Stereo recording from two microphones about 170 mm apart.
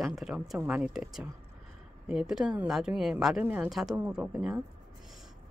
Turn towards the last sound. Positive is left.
turn(degrees=-5)  # may be behind; listen again after turning